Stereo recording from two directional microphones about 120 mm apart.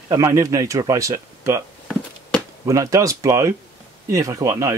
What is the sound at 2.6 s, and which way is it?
Speech, 30° right (ahead or behind).